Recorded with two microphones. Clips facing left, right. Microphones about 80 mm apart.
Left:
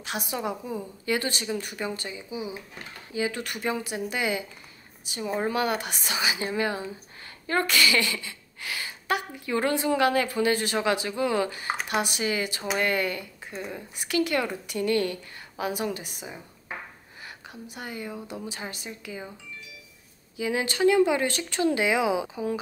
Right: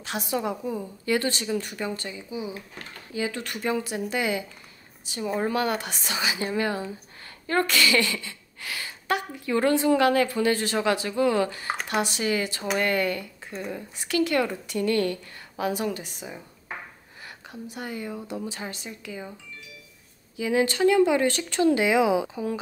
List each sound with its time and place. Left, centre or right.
0.0 s a woman's voice: centre
13.5 s speech: centre
13.9 s a woman's voice: centre
17.6 s a woman's voice: left
18.1 s speech: right
18.5 s a woman's voice: centre
20.3 s a woman's voice: left